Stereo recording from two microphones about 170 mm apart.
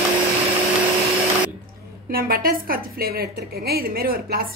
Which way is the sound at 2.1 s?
60° right (ahead or behind).